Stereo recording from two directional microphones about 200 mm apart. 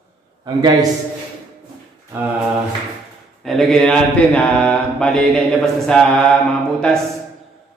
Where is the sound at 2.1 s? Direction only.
10° right (ahead or behind).